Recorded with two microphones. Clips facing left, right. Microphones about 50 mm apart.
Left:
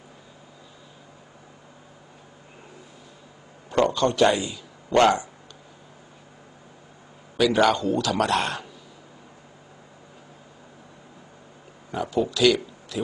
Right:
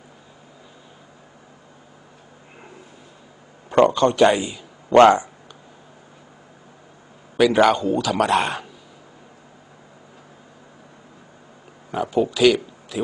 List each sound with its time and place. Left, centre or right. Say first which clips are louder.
3.7 s a man's voice: right 5 dB; right
4.9 s speech: right 7 dB; right
7.3 s a man's voice: right 4 dB; right
8.0 s speech: right 3 dB; centre
8.4 s speech: right 4 dB; right
11.9 s speech: right 4 dB; centre